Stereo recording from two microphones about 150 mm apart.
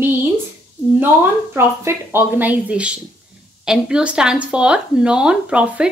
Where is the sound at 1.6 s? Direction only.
15° right (ahead or behind).